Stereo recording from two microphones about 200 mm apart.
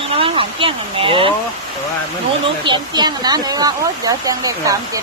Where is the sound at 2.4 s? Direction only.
25° right (ahead or behind).